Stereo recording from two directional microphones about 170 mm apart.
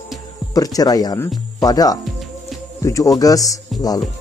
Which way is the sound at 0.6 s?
20° left (ahead or behind).